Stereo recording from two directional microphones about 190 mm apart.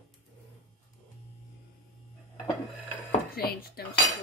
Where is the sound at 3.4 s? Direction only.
55° left (ahead or behind).